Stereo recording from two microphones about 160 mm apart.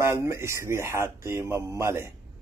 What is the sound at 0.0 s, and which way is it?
Speech, 15° right (ahead or behind).